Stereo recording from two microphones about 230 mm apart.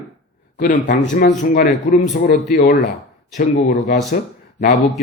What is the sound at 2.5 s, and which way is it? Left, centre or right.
Speech, left.